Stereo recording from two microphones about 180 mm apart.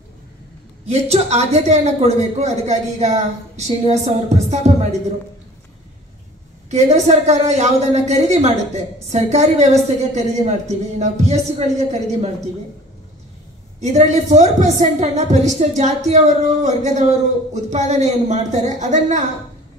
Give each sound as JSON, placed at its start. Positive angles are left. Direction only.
{"t": 0.8, "sound": "a man's voice", "side_deg": -35}
{"t": 6.7, "sound": "a man's voice", "side_deg": -35}
{"t": 13.7, "sound": "a man's voice", "side_deg": -40}